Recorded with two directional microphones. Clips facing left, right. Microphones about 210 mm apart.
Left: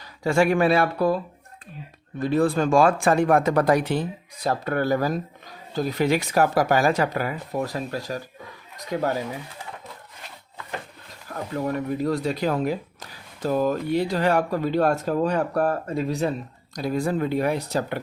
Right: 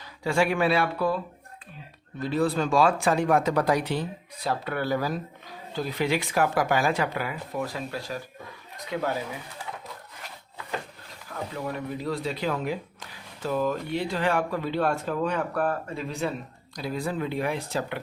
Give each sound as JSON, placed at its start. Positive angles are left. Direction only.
{"t": 0.2, "sound": "speech", "side_deg": 45}
{"t": 11.5, "sound": "speech", "side_deg": 45}